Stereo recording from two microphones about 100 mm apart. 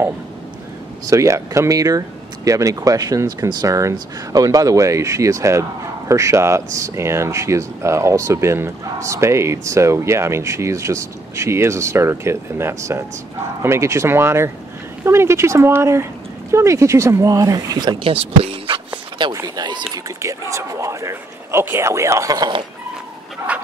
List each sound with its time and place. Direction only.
1.1 s speech: 30° right (ahead or behind)
18.0 s speech: 65° right (ahead or behind)
19.4 s speech: 45° right (ahead or behind)
20.2 s speech: 30° right (ahead or behind)